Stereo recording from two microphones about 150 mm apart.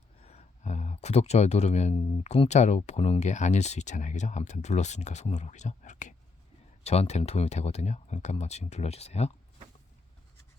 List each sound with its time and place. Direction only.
0.2 s speech: 45° left (ahead or behind)
6.8 s speech: 45° left (ahead or behind)